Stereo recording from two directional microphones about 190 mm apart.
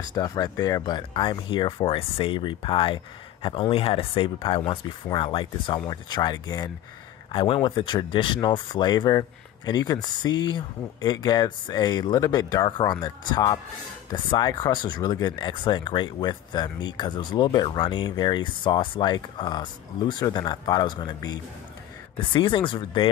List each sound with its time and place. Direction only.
0.0 s speech: 20° left (ahead or behind)